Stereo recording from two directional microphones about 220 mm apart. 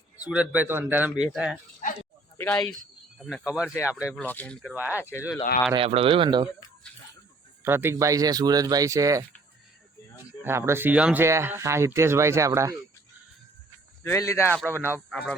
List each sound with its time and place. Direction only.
0.3 s speech: 5° right (ahead or behind)
4.0 s speech: 5° left (ahead or behind)
4.7 s speech: 5° right (ahead or behind)
4.9 s speech: 10° left (ahead or behind)
5.7 s speech: 25° right (ahead or behind)
7.6 s speech: 10° right (ahead or behind)
10.4 s speech: 10° right (ahead or behind)
14.0 s speech: 10° left (ahead or behind)